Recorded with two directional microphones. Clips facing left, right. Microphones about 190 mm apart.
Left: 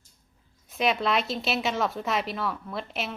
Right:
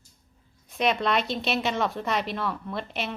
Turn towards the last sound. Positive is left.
turn(degrees=0)  # may be behind; listen again after turning